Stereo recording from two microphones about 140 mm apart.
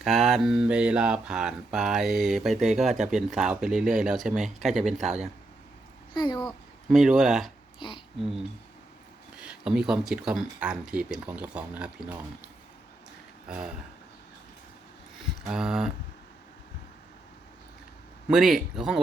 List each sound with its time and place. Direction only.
0.0 s mantra: centre (ahead or behind)
6.1 s speech: 35° left (ahead or behind)
6.9 s mantra: 5° right (ahead or behind)
7.8 s speech: 35° left (ahead or behind)
9.4 s speech: 5° right (ahead or behind)
15.4 s mantra: 5° right (ahead or behind)
18.3 s mantra: centre (ahead or behind)